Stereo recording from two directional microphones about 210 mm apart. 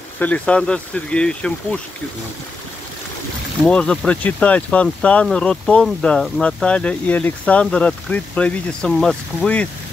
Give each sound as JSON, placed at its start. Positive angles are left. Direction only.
{"t": 0.2, "sound": "speech", "side_deg": 5}
{"t": 3.6, "sound": "speech", "side_deg": 5}